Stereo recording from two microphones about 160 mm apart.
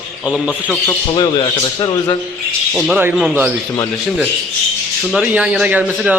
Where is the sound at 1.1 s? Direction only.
30° left (ahead or behind).